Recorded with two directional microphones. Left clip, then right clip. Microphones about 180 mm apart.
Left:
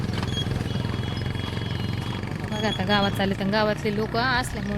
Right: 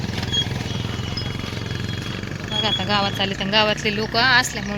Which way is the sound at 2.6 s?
35° left (ahead or behind).